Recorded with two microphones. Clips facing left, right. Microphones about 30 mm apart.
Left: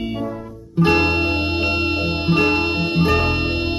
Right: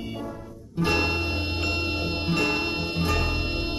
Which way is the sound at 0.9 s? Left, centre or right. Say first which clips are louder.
Left 7 dB; centre.